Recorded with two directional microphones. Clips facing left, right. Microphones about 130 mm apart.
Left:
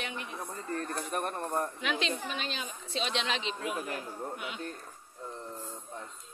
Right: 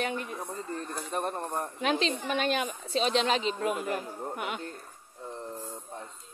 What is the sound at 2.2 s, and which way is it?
Speech, 55° right (ahead or behind).